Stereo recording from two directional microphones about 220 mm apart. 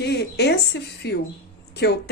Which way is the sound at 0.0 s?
50° left (ahead or behind).